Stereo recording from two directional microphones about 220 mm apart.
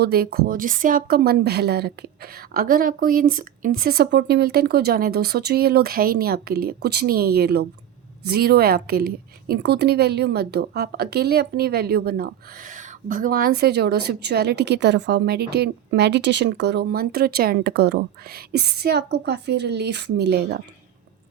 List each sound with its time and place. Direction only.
0.0 s a woman's voice: 45° right (ahead or behind)